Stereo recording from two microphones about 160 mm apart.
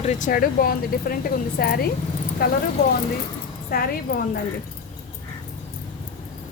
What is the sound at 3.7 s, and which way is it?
Speech, 70° left (ahead or behind).